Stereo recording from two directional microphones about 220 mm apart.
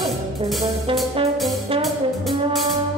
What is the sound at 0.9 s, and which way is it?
Brass instrument, 25° right (ahead or behind).